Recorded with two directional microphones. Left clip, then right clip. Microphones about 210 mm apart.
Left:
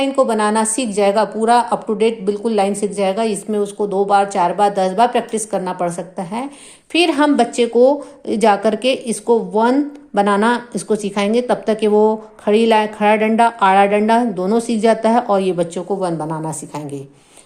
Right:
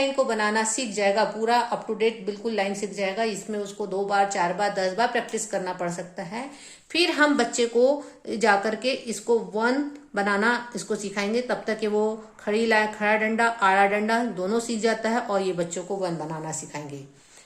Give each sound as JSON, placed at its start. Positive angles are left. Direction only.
{"t": 0.0, "sound": "a woman's voice", "side_deg": 35}